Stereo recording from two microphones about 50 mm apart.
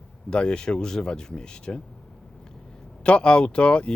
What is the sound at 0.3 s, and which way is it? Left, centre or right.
Speech, centre.